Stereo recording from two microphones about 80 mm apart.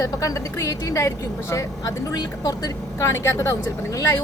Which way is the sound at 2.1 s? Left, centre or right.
Left.